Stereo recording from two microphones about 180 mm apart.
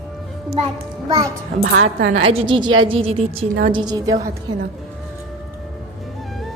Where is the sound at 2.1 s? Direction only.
30° right (ahead or behind).